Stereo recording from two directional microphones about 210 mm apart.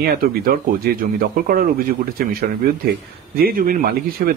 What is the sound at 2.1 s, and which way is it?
Speech, 45° right (ahead or behind).